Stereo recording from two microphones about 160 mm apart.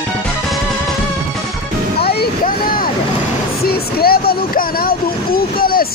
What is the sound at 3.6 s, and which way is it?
Vehicle, 70° left (ahead or behind).